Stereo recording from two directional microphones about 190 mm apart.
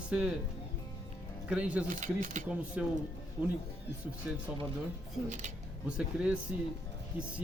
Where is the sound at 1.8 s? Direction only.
40° right (ahead or behind).